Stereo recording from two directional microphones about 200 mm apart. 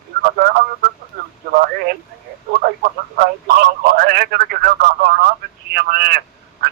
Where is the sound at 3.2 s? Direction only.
50° right (ahead or behind).